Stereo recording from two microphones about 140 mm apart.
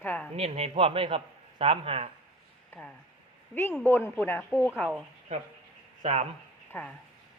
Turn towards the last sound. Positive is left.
turn(degrees=15)  # may be behind; listen again after turning